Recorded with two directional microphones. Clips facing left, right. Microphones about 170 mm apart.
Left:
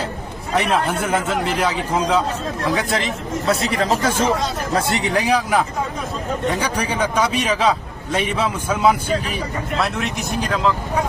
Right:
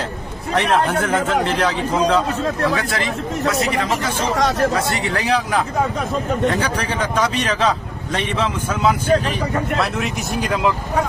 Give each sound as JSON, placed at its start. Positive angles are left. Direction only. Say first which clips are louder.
{"t": 0.5, "sound": "a man's voice", "louder": "right 2 dB", "side_deg": 10}
{"t": 3.5, "sound": "speech", "louder": "left 4 dB", "side_deg": 30}
{"t": 4.4, "sound": "speech", "louder": "right 7 dB", "side_deg": -80}
{"t": 4.9, "sound": "a man's voice", "louder": "left 1 dB", "side_deg": 20}
{"t": 9.7, "sound": "speech", "louder": "right 1 dB", "side_deg": 0}
{"t": 10.5, "sound": "speech", "louder": "even", "side_deg": -10}